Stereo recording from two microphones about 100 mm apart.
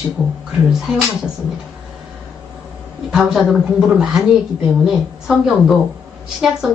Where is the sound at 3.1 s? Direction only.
Centre (ahead or behind).